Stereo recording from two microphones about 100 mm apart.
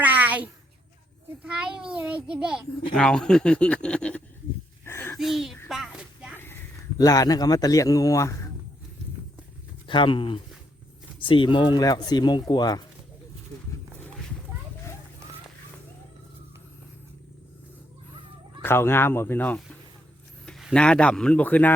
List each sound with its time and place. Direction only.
0.0 s a sound: 15° right (ahead or behind)
1.4 s a child's voice: 10° right (ahead or behind)
2.9 s speech: 10° left (ahead or behind)
4.9 s a sound: 20° left (ahead or behind)
5.1 s speech: 5° right (ahead or behind)
5.6 s a sound: 5° right (ahead or behind)
7.0 s a man's voice: 35° left (ahead or behind)
9.8 s speech: 55° left (ahead or behind)
11.8 s speech: 40° left (ahead or behind)
18.6 s speech: 25° left (ahead or behind)
20.4 s a sound: 5° left (ahead or behind)
20.7 s speech: 10° left (ahead or behind)